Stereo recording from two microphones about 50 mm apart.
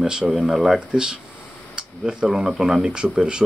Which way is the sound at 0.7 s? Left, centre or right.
Centre.